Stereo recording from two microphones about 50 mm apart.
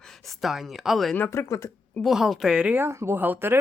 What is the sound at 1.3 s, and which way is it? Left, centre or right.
Speech, left.